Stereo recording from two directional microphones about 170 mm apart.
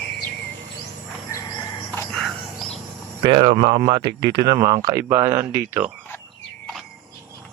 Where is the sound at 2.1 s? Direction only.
Centre (ahead or behind).